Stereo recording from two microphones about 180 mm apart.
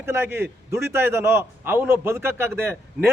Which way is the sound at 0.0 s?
10° right (ahead or behind).